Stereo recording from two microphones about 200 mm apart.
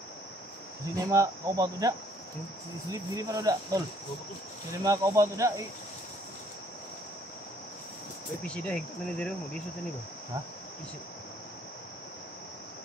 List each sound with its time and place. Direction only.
0.9 s cricket: 15° right (ahead or behind)
4.8 s cricket: 15° right (ahead or behind)
8.5 s speech: 5° left (ahead or behind)